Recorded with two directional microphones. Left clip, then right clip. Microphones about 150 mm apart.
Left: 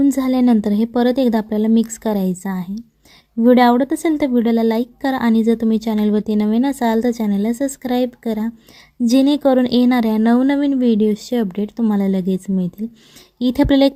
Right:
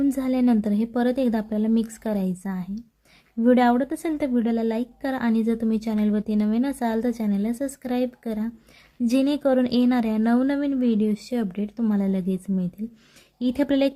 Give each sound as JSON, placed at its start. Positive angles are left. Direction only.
{"t": 0.0, "sound": "a woman's voice", "side_deg": 30}